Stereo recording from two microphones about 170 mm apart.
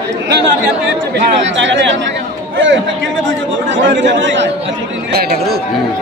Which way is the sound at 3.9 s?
90° right.